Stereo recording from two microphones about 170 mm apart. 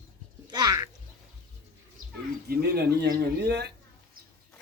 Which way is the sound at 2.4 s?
70° right (ahead or behind).